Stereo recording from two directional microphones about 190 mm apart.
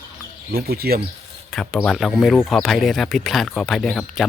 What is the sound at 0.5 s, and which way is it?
Speech, 55° right (ahead or behind).